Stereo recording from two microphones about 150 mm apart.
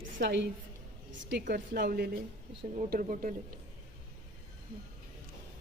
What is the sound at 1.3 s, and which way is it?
Speech, 90° right.